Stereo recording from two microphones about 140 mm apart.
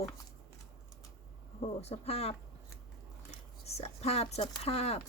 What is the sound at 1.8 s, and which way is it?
Speech, 45° left (ahead or behind).